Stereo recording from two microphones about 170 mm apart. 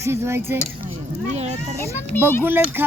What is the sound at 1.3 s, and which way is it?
Speech, 40° right (ahead or behind).